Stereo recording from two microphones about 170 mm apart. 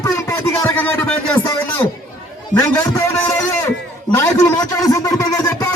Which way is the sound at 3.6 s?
15° left (ahead or behind).